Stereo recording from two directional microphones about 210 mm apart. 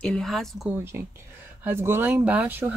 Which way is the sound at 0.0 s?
5° left (ahead or behind).